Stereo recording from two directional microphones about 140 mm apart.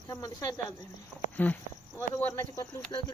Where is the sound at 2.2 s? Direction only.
20° left (ahead or behind).